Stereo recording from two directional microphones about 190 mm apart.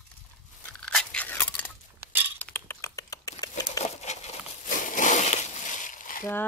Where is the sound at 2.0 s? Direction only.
10° right (ahead or behind).